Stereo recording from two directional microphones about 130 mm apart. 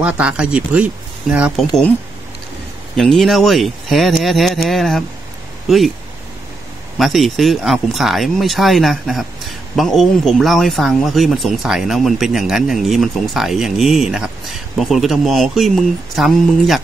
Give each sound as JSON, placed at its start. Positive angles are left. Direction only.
{"t": 0.0, "sound": "speech", "side_deg": -10}
{"t": 3.0, "sound": "speech", "side_deg": 0}
{"t": 7.0, "sound": "speech", "side_deg": 0}